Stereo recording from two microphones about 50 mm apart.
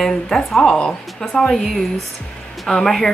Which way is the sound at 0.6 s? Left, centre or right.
Centre.